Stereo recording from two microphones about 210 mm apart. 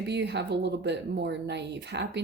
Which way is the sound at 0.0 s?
55° right (ahead or behind).